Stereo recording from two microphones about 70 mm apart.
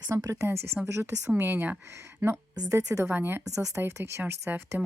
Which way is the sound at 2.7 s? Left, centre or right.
Right.